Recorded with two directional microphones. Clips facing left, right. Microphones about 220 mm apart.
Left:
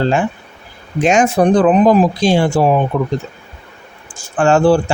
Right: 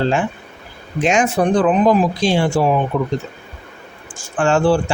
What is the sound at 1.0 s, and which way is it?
Speech, 40° left (ahead or behind).